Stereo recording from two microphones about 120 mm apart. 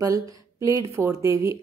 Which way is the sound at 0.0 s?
30° right (ahead or behind).